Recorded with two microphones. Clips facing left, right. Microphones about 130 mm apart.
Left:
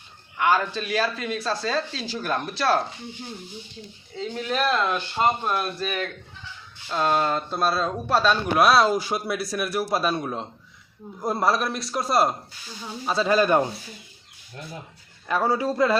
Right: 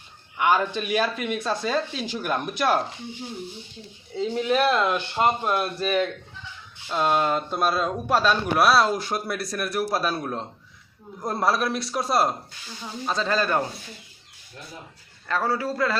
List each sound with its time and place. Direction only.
0.3 s speech: 10° right (ahead or behind)
4.4 s speech: 15° right (ahead or behind)
5.4 s speech: 5° right (ahead or behind)
5.8 s speech: 20° right (ahead or behind)
6.8 s speech: 5° right (ahead or behind); by 13.7 s 15° left (ahead or behind)
15.3 s speech: 15° left (ahead or behind)